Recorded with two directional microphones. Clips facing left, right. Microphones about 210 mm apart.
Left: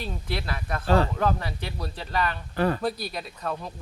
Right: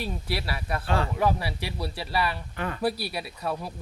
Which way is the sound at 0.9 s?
35° left (ahead or behind).